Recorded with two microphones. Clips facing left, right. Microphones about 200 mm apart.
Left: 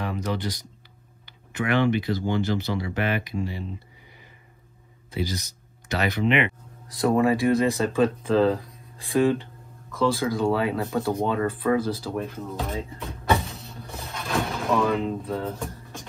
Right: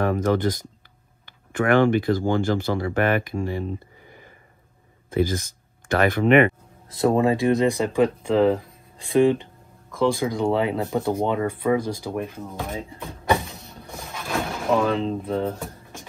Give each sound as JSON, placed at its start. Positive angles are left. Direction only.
{"t": 0.0, "sound": "speech", "side_deg": -50}
{"t": 6.9, "sound": "speech", "side_deg": -25}
{"t": 13.8, "sound": "a sound", "side_deg": -10}
{"t": 14.2, "sound": "vehicle", "side_deg": 0}
{"t": 14.8, "sound": "speech", "side_deg": -30}